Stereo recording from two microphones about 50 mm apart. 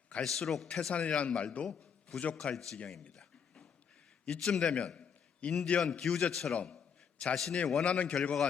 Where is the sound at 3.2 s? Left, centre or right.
Centre.